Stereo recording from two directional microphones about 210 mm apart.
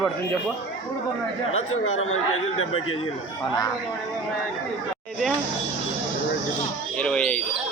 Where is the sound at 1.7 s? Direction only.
80° left.